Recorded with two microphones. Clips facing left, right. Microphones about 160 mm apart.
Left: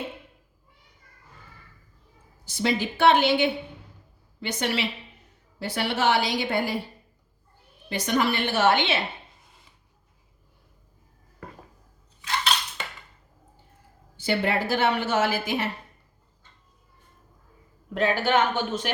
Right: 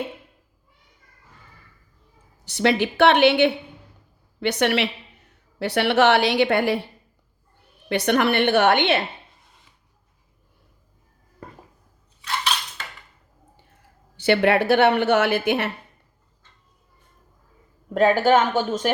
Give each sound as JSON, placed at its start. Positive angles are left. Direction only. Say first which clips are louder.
{"t": 2.4, "sound": "a woman's voice", "louder": "right 5 dB", "side_deg": -70}
{"t": 7.9, "sound": "speech", "louder": "right 5 dB", "side_deg": -65}
{"t": 14.2, "sound": "speech", "louder": "right 7 dB", "side_deg": -70}
{"t": 17.9, "sound": "speech", "louder": "right 6 dB", "side_deg": -45}